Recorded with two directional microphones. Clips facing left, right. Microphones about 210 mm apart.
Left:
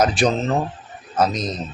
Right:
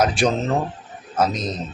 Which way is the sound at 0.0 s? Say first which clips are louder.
Left 1 dB; 10° right (ahead or behind).